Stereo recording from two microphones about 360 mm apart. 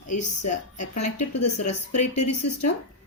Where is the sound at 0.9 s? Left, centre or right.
Left.